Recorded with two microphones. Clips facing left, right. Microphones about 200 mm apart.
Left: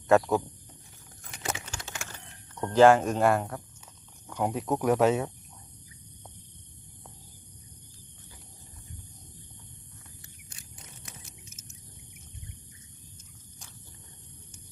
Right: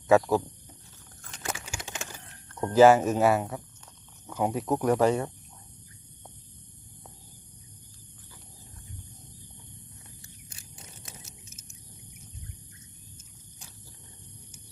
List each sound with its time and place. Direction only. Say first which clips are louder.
0.1 s speech: right 1 dB; centre (ahead or behind)
1.2 s a sound: left 1 dB; 20° left (ahead or behind)
1.6 s typewriter: right 2 dB; 15° right (ahead or behind)
2.6 s speech: right 1 dB; 10° right (ahead or behind)